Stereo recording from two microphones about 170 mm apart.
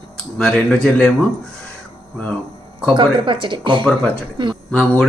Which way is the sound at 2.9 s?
30° right (ahead or behind).